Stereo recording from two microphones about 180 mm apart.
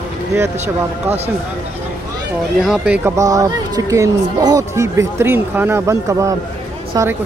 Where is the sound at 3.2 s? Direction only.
20° right (ahead or behind).